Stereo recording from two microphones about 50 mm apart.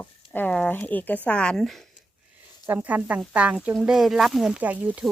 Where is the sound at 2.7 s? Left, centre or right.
Right.